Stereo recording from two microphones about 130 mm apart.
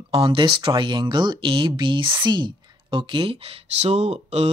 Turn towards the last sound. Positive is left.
turn(degrees=-55)  # may be behind; listen again after turning